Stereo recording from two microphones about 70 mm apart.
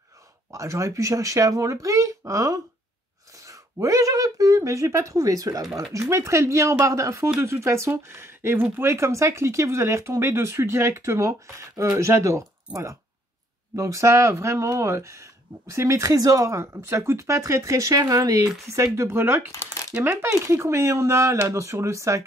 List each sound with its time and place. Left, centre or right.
0.5 s speech: right
3.8 s speech: right
5.8 s speech: right
19.0 s speech: right
19.5 s speech: left
20.0 s speech: right